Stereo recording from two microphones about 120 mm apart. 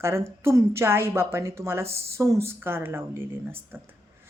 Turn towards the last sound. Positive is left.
turn(degrees=-20)  # may be behind; listen again after turning